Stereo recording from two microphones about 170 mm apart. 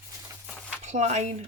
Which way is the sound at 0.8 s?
40° right (ahead or behind).